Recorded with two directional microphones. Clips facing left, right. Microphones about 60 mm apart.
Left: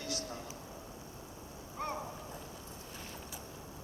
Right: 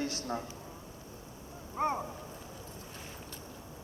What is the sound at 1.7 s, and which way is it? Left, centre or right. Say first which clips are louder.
Speech: right 7 dB; right.